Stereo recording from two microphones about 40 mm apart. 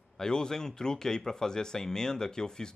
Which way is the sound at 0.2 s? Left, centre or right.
Centre.